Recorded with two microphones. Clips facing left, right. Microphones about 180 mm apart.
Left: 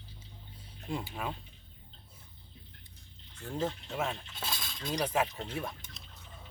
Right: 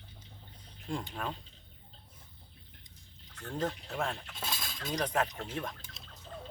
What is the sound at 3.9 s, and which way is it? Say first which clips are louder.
Speech: left 1 dB; 5° left (ahead or behind).